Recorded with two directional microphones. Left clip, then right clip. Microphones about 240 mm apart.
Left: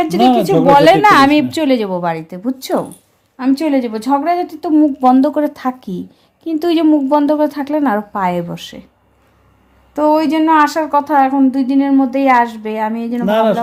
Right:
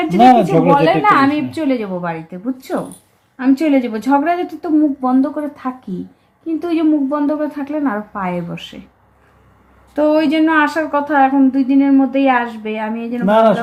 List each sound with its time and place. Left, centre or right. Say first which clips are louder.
0.2 s speech: right 4 dB; centre
0.8 s a woman's voice: left 4 dB; left
3.3 s a woman's voice: right 1 dB; left
4.8 s a woman's voice: left 6 dB; left
9.9 s a woman's voice: left 1 dB; left
13.2 s speech: right 2 dB; centre